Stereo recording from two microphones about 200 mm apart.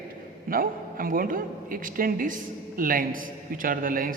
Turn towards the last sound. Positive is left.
turn(degrees=-45)  # may be behind; listen again after turning